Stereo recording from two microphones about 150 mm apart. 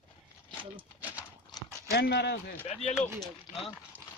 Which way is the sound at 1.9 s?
90° left.